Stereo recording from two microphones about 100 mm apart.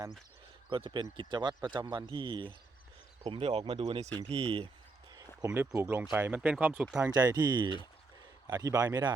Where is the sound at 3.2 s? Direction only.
65° right (ahead or behind).